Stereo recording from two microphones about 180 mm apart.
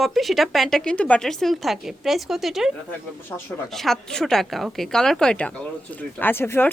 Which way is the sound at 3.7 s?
Centre (ahead or behind).